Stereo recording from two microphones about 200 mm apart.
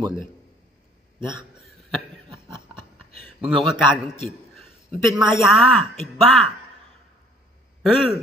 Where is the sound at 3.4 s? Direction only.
Centre (ahead or behind).